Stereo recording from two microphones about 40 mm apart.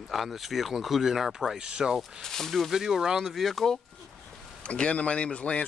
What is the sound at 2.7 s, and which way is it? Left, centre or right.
Speech, centre.